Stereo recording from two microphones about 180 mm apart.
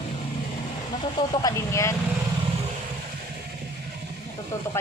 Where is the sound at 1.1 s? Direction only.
20° left (ahead or behind).